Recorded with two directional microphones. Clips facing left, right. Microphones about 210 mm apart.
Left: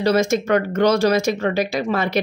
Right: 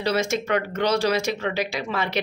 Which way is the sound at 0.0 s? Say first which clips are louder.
Left 6 dB; 45° left (ahead or behind).